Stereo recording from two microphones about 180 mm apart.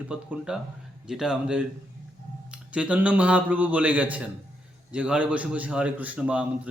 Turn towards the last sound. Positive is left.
turn(degrees=-5)  # may be behind; listen again after turning